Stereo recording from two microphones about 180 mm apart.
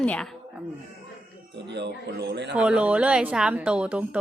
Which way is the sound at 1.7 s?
70° right (ahead or behind).